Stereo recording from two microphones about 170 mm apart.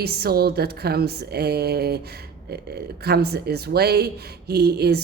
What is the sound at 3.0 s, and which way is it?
Speech, 70° right (ahead or behind).